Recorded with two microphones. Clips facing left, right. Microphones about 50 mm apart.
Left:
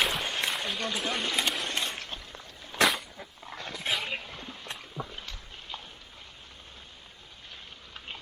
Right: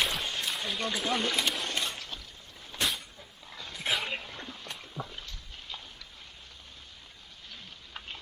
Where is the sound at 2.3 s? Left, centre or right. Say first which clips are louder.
Left 6 dB; left.